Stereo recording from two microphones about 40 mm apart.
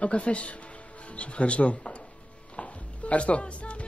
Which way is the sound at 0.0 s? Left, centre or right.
Left.